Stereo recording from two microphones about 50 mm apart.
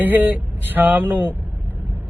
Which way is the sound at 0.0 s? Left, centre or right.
Right.